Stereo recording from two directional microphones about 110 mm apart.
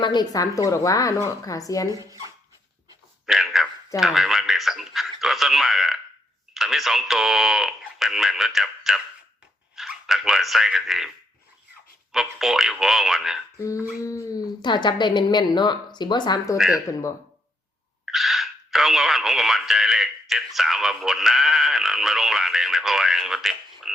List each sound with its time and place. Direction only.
0.0 s a woman's voice: 40° left (ahead or behind)
1.9 s speech: 30° right (ahead or behind)
3.2 s a sound: centre (ahead or behind)
4.0 s speech: centre (ahead or behind)
12.1 s speech: 5° right (ahead or behind)
13.8 s speech: 30° left (ahead or behind)
14.6 s speech: 45° left (ahead or behind)
16.6 s speech: centre (ahead or behind)
18.0 s speech: centre (ahead or behind)